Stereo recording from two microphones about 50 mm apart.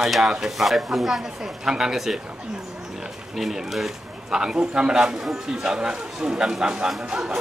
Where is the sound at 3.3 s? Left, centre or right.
Centre.